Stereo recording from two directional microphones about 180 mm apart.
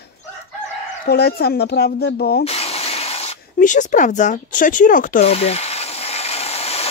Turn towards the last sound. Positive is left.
turn(degrees=35)  # may be behind; listen again after turning